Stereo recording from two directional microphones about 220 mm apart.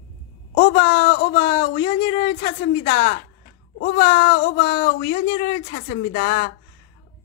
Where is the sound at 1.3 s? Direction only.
20° left (ahead or behind).